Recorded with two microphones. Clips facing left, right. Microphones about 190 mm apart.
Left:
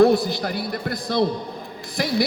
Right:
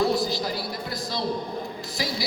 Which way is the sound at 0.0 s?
55° left (ahead or behind).